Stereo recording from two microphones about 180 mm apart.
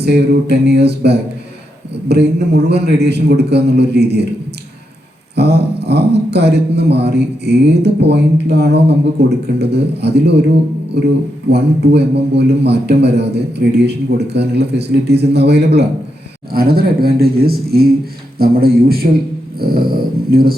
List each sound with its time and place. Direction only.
0.0 s a man's voice: 65° right (ahead or behind)
5.3 s a man's voice: 65° right (ahead or behind)
19.5 s dog: 55° right (ahead or behind)
20.3 s a man's voice: 55° right (ahead or behind)